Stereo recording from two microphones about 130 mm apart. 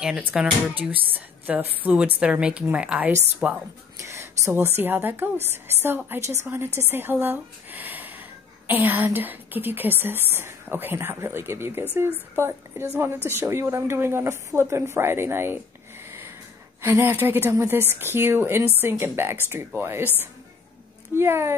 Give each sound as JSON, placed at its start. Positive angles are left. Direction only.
{"t": 0.0, "sound": "speech", "side_deg": -10}
{"t": 4.0, "sound": "speech", "side_deg": -20}
{"t": 16.8, "sound": "speech", "side_deg": -20}